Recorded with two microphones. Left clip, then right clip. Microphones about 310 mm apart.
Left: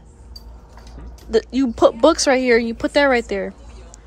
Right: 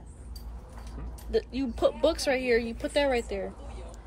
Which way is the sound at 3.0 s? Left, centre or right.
Left.